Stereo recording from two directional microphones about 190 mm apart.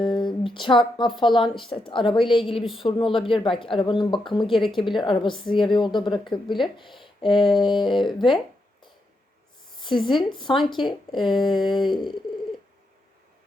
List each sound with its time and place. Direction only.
0.0 s a woman's voice: 25° left (ahead or behind)
10.2 s a woman's voice: 25° left (ahead or behind)